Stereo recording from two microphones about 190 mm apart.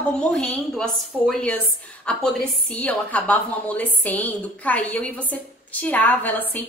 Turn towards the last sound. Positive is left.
turn(degrees=10)  # may be behind; listen again after turning